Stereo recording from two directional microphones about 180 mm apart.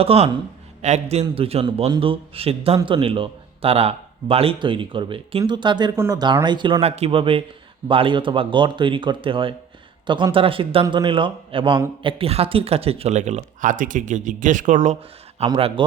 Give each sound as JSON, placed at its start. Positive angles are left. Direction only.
{"t": 0.0, "sound": "a man's voice", "side_deg": -35}
{"t": 15.4, "sound": "a man's voice", "side_deg": -30}